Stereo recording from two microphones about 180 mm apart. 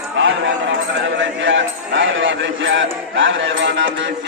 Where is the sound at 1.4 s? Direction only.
90° right.